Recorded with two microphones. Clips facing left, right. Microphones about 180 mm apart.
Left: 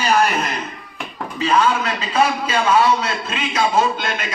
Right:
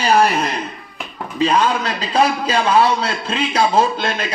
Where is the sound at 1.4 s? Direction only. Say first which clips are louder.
Right 1 dB; 35° right (ahead or behind).